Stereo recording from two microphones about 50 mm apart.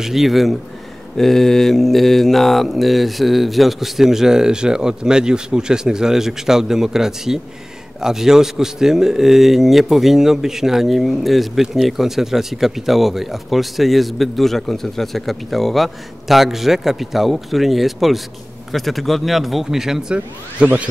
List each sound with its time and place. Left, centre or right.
0.0 s speech: centre
1.1 s mantra: centre
11.6 s speech: centre
20.5 s a sound: right